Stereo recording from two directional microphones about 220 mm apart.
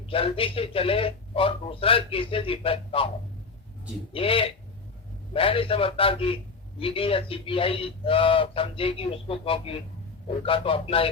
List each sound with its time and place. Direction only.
0.1 s speech: 25° left (ahead or behind)
4.1 s speech: 25° left (ahead or behind)